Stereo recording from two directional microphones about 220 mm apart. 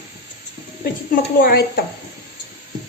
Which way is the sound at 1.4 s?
45° left (ahead or behind).